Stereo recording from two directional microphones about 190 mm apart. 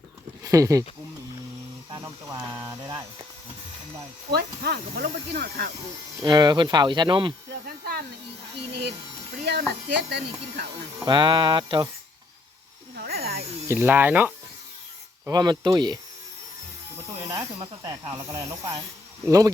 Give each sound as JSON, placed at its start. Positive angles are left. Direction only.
{"t": 0.4, "sound": "speech", "side_deg": -15}
{"t": 1.9, "sound": "a sound", "side_deg": -20}
{"t": 4.4, "sound": "speech", "side_deg": -55}
{"t": 6.2, "sound": "speech", "side_deg": -20}
{"t": 7.5, "sound": "a sound", "side_deg": -55}
{"t": 8.5, "sound": "electric shaver", "side_deg": -60}
{"t": 9.4, "sound": "speech", "side_deg": -55}
{"t": 11.0, "sound": "speech", "side_deg": -25}
{"t": 13.0, "sound": "snake", "side_deg": -55}
{"t": 13.7, "sound": "speech", "side_deg": -10}
{"t": 15.3, "sound": "speech", "side_deg": -20}
{"t": 17.8, "sound": "speech", "side_deg": -20}